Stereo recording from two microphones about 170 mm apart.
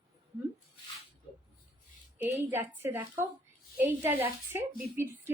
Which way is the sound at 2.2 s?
10° right (ahead or behind).